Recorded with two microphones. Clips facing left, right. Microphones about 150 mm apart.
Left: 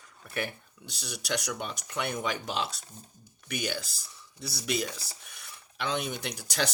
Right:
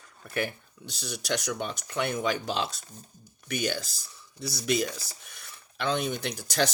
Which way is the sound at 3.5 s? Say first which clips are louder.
Right 3 dB; 10° left (ahead or behind).